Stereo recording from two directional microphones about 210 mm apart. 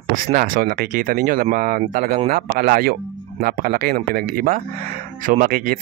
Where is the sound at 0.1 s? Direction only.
45° right (ahead or behind).